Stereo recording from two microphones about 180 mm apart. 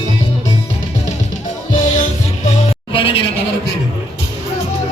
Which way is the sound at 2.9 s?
30° left (ahead or behind).